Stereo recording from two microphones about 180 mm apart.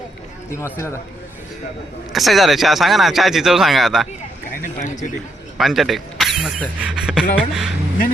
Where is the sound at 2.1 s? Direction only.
Centre (ahead or behind).